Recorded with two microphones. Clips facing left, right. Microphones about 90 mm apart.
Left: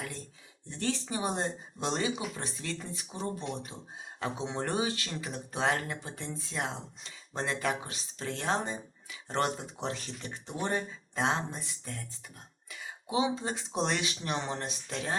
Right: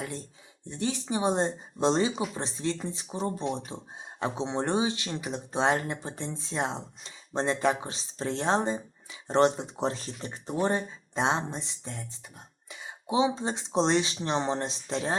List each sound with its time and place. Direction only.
0.7 s speech: 15° right (ahead or behind)